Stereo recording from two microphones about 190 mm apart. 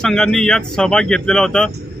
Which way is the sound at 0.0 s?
5° left (ahead or behind).